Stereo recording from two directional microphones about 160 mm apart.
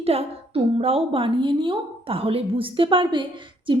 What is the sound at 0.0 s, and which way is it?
A woman's voice, 40° right (ahead or behind).